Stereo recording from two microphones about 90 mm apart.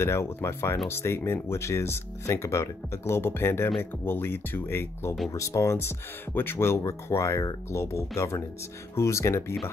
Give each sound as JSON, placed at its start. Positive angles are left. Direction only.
{"t": 0.0, "sound": "speech", "side_deg": 30}